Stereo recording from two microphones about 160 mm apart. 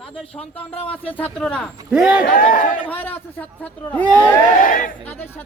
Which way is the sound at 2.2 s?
60° left (ahead or behind).